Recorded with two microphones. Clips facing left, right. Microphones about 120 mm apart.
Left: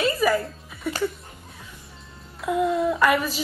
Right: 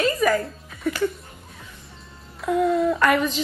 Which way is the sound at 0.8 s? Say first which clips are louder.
Right 3 dB; 10° left (ahead or behind).